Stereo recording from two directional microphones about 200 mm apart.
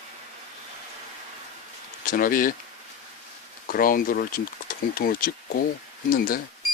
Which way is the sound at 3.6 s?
45° left (ahead or behind).